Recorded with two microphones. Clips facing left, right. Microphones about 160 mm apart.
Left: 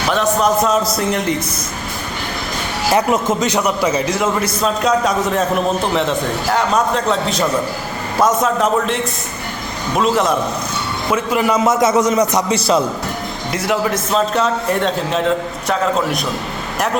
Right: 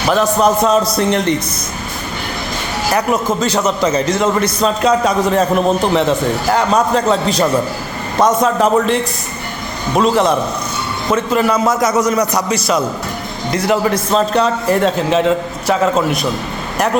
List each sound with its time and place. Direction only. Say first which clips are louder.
0.1 s a man's voice: right 3 dB; centre (ahead or behind)
2.9 s a man's voice: left 1 dB; 20° left (ahead or behind); by 9.0 s centre (ahead or behind)
10.0 s a man's voice: right 3 dB; centre (ahead or behind)
11.1 s a man's voice: right 2 dB; 15° left (ahead or behind); by 12.8 s 30° left (ahead or behind)
13.5 s a man's voice: right 4 dB; centre (ahead or behind)